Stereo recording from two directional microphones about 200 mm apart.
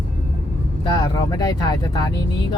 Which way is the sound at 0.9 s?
20° left (ahead or behind).